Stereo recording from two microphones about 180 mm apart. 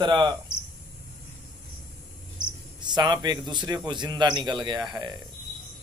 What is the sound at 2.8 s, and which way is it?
A man's voice, 25° right (ahead or behind).